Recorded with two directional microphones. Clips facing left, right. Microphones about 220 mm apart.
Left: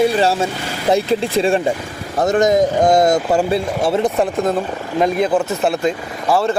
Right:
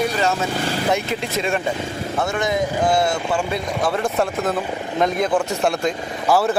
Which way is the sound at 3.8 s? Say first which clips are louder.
Left 2 dB; 25° left (ahead or behind).